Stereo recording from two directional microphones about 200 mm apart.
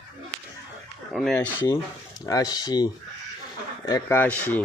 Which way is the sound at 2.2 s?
15° left (ahead or behind).